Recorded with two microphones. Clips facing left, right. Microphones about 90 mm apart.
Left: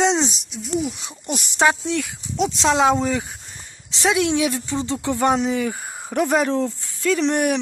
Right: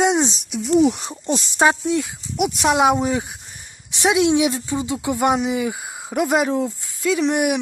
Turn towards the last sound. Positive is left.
turn(degrees=-5)  # may be behind; listen again after turning